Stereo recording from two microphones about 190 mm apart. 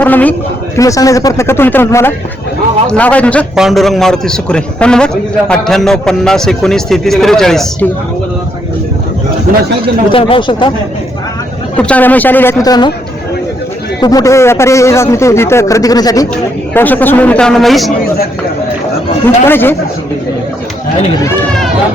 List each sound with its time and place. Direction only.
0.0 s a man's voice: 10° left (ahead or behind)
10.1 s speech: 30° left (ahead or behind)
11.8 s a man's voice: 5° left (ahead or behind)
14.0 s a man's voice: 20° left (ahead or behind)
16.3 s a man's voice: 10° left (ahead or behind)
19.5 s a man's voice: 10° left (ahead or behind)